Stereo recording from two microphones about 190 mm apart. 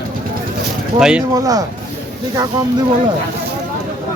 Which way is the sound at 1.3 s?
20° right (ahead or behind).